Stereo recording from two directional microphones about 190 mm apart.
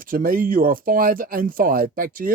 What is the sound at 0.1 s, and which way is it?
Speech, 45° right (ahead or behind).